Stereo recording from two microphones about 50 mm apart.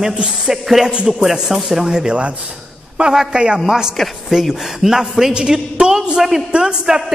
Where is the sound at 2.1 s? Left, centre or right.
Right.